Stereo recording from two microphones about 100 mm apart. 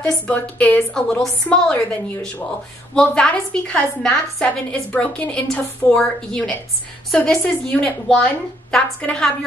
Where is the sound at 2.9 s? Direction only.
5° left (ahead or behind).